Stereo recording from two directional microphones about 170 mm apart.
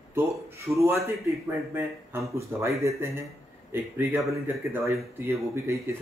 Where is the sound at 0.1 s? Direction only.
15° right (ahead or behind).